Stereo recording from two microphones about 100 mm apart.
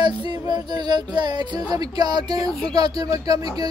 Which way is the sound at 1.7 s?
40° right (ahead or behind).